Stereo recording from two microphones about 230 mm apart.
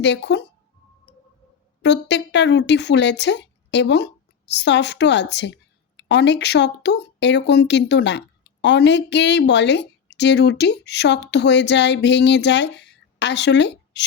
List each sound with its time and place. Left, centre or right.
0.0 s speech: left
1.8 s speech: left